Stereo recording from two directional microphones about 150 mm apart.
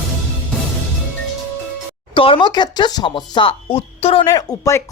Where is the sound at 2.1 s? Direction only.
35° left (ahead or behind).